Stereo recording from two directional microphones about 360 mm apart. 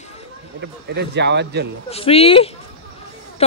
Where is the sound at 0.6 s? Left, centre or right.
Right.